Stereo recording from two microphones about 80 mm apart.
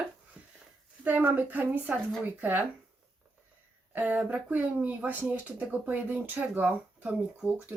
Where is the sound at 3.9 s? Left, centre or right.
Right.